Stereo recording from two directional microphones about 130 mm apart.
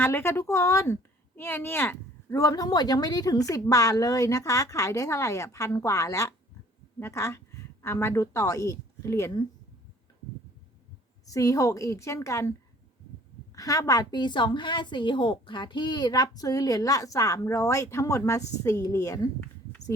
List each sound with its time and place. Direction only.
0.0 s a woman's voice: 20° left (ahead or behind)
11.3 s a woman's voice: 25° left (ahead or behind)
13.6 s a woman's voice: 25° left (ahead or behind)